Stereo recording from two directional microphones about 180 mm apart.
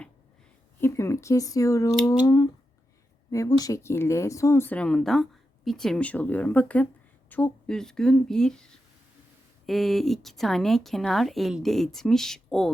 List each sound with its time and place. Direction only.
0.8 s speech: 15° left (ahead or behind)